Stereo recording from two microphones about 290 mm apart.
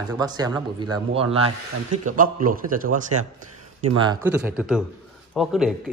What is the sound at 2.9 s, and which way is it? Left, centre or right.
Speech, right.